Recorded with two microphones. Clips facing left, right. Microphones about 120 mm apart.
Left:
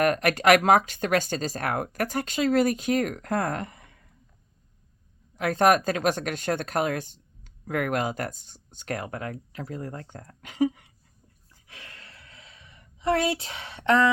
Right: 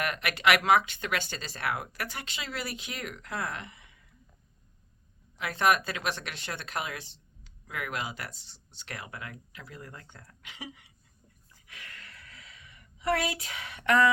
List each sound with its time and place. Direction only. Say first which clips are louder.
0.0 s speech: left 7 dB; 40° left (ahead or behind)
5.4 s speech: left 6 dB; 45° left (ahead or behind)
11.7 s a sound: left 1 dB; 30° left (ahead or behind)